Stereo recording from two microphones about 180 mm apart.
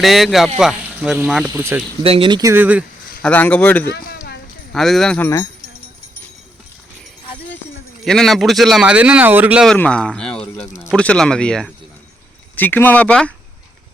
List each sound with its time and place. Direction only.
0.0 s speech: centre (ahead or behind)
2.0 s speech: 30° right (ahead or behind); by 2.8 s 10° right (ahead or behind)
3.2 s speech: 10° left (ahead or behind)
3.8 s a sound: 60° left (ahead or behind)
4.7 s speech: centre (ahead or behind)
8.0 s speech: centre (ahead or behind)
9.6 s speech: 5° left (ahead or behind)